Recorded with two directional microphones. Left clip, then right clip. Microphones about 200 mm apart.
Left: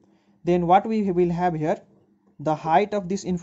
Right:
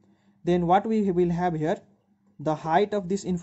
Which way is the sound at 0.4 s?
15° right (ahead or behind).